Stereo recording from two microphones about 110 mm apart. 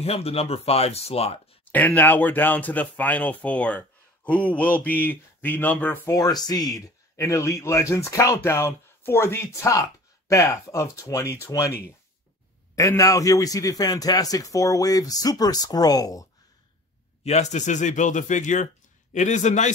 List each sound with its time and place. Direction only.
0.0 s speech: 65° left (ahead or behind)
2.0 s speech: 15° left (ahead or behind)
6.0 s speech: 35° left (ahead or behind)
12.7 s a man's voice: 30° left (ahead or behind)
17.2 s speech: 85° left